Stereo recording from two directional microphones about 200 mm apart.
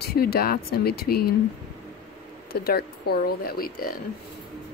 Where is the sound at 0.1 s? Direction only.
50° left (ahead or behind).